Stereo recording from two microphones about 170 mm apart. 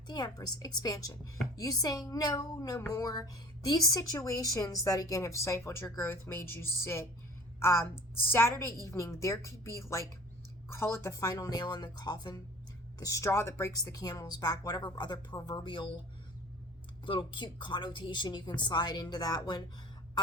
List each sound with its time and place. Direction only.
0.1 s a woman's voice: 25° left (ahead or behind)
17.1 s a woman's voice: 30° left (ahead or behind)